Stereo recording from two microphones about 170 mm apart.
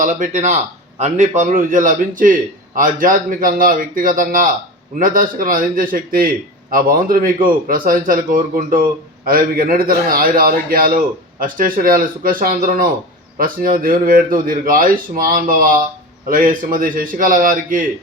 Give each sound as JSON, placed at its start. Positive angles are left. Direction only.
{"t": 0.0, "sound": "a man's voice", "side_deg": -50}